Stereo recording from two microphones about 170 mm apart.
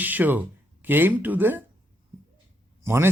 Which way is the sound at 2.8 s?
15° right (ahead or behind).